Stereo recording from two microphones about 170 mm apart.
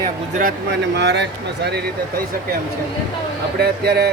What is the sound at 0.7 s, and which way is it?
Speech, 85° right.